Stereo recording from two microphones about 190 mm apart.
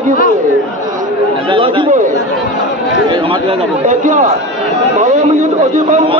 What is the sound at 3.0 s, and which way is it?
Speech, 25° right (ahead or behind).